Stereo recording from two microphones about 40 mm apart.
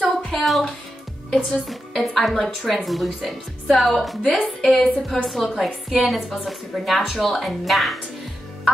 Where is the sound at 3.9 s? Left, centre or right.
Centre.